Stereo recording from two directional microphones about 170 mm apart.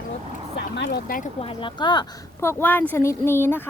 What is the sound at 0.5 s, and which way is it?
Speech, 80° left.